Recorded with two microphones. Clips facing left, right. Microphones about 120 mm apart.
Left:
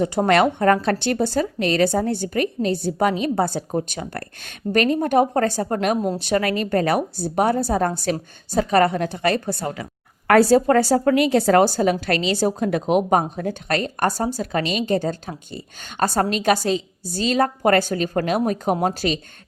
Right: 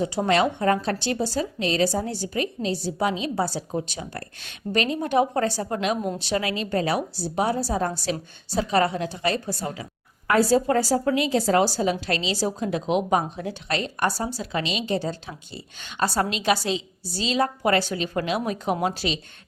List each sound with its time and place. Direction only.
0.0 s a woman's voice: 55° left (ahead or behind)